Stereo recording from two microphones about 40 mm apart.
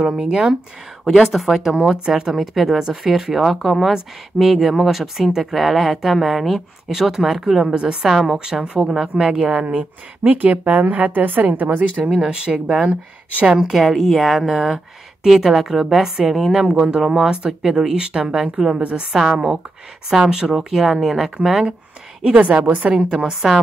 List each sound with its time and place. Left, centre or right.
0.0 s speech: centre
6.9 s speech: centre
7.6 s speech: right
9.2 s speech: centre
9.5 s a woman's voice: right
12.1 s speech: right
13.6 s speech: centre
17.9 s speech: right
20.1 s speech: centre
20.5 s speech: centre
22.3 s speech: right
23.3 s speech: centre